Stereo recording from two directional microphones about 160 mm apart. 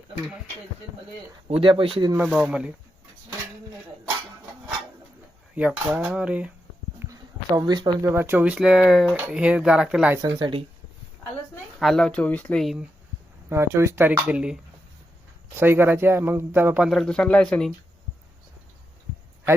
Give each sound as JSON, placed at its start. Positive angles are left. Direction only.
{"t": 1.5, "sound": "speech", "side_deg": -35}
{"t": 2.1, "sound": "speech", "side_deg": -5}
{"t": 5.5, "sound": "speech", "side_deg": -10}
{"t": 7.1, "sound": "speech", "side_deg": -25}
{"t": 8.1, "sound": "speech", "side_deg": -15}
{"t": 10.4, "sound": "speech", "side_deg": -35}
{"t": 11.8, "sound": "speech", "side_deg": 0}
{"t": 13.5, "sound": "speech", "side_deg": -15}